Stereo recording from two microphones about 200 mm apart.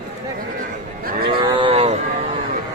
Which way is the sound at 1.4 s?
25° right (ahead or behind).